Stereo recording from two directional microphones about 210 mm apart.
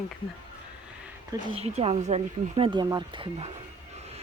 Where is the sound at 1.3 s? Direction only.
25° right (ahead or behind).